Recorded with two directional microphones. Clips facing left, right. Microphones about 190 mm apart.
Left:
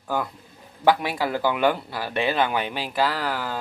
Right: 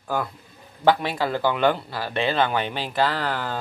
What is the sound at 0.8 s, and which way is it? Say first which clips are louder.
Speech: even; 10° left (ahead or behind).